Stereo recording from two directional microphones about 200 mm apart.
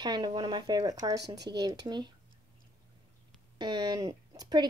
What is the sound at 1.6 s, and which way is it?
Speech, 20° right (ahead or behind).